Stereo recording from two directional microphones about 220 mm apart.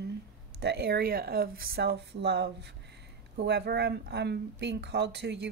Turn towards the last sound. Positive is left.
turn(degrees=-50)  # may be behind; listen again after turning